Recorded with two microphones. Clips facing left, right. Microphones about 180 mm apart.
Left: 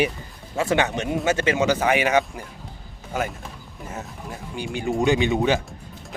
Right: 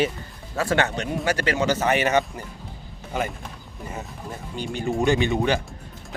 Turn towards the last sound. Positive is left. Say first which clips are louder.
# left 1 dB
turn(degrees=15)  # may be behind; listen again after turning